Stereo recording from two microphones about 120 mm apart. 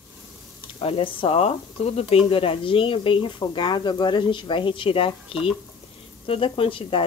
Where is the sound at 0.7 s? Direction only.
50° left (ahead or behind).